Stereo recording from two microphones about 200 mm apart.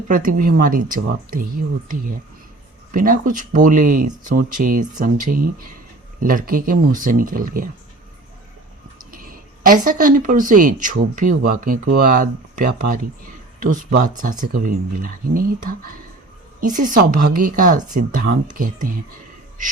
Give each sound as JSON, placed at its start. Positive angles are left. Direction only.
{"t": 0.1, "sound": "a woman's voice", "side_deg": -40}
{"t": 2.9, "sound": "a woman's voice", "side_deg": -45}
{"t": 9.1, "sound": "a woman's voice", "side_deg": -45}